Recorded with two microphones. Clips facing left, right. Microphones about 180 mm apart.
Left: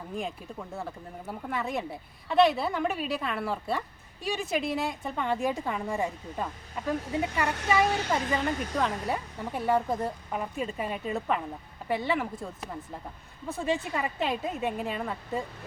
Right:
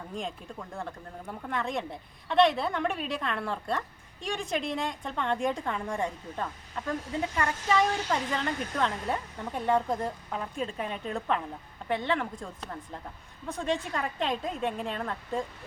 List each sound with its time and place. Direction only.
0.1 s speech: 5° left (ahead or behind)
7.4 s a woman's voice: 65° left (ahead or behind)
7.7 s speech: 5° left (ahead or behind)